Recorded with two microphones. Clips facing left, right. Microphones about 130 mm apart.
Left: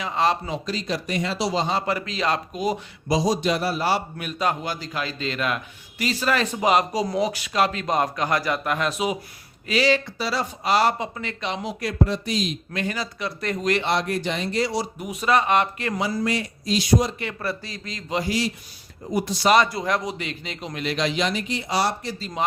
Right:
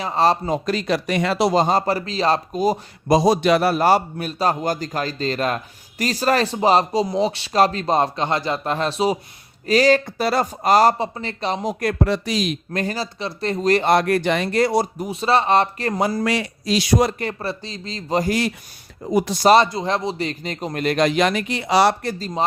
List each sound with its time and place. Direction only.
0.0 s speech: 35° right (ahead or behind)
3.1 s a man's voice: 60° right (ahead or behind)
4.3 s a man's voice: 35° right (ahead or behind)
9.6 s speech: 45° right (ahead or behind); by 12.5 s 80° right
12.7 s speech: 35° right (ahead or behind); by 14.8 s 55° right (ahead or behind)
14.9 s a man's voice: 30° right (ahead or behind)
16.2 s speech: 80° right
17.4 s speech: 25° right (ahead or behind)
18.1 s speech: 45° right (ahead or behind)
19.0 s speech: 90° right
19.4 s a man's voice: 35° right (ahead or behind)
19.6 s speech: 25° right (ahead or behind); by 21.9 s 85° right